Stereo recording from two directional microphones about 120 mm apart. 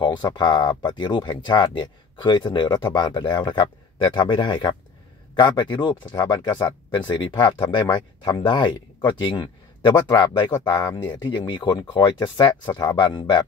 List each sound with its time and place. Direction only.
0.0 s speech: 40° left (ahead or behind)
10.5 s speech: 20° left (ahead or behind)
11.0 s speech: 40° left (ahead or behind)